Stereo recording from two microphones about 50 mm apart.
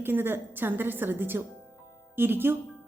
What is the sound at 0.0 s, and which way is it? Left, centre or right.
A woman's voice, right.